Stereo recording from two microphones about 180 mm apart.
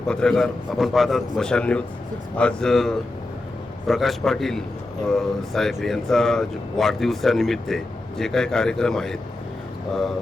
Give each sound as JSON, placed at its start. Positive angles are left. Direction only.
{"t": 0.1, "sound": "speech", "side_deg": 5}